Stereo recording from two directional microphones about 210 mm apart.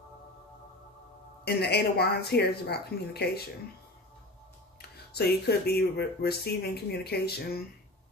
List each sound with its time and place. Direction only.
1.4 s speech: 50° left (ahead or behind)
4.8 s speech: 50° left (ahead or behind)